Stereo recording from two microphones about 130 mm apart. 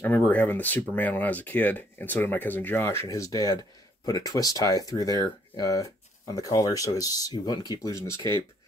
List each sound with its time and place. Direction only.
0.0 s speech: 10° left (ahead or behind)